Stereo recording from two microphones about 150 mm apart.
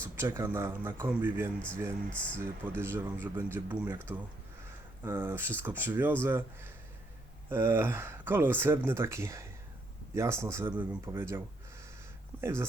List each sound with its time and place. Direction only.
0.0 s speech: 15° right (ahead or behind)
2.0 s speech: 10° left (ahead or behind)
2.4 s speech: 15° right (ahead or behind)
5.0 s speech: 15° right (ahead or behind)
7.5 s a man's voice: 15° right (ahead or behind)